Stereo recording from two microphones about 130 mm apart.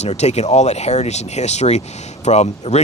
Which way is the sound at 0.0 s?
55° left (ahead or behind).